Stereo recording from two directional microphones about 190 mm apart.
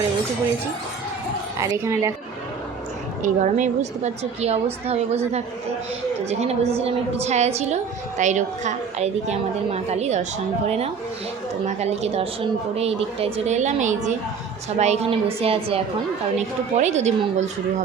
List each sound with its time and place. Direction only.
1.5 s speech: 15° right (ahead or behind)
3.2 s a woman's voice: 40° right (ahead or behind)